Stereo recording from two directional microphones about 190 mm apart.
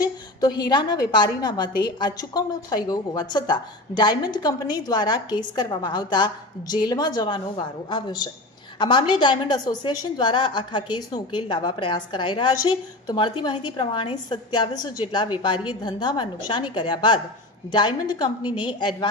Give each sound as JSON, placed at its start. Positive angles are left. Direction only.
{"t": 0.0, "sound": "a woman's voice", "side_deg": 20}